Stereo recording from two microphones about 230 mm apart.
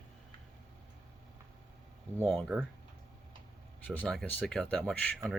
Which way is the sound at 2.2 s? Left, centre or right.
Centre.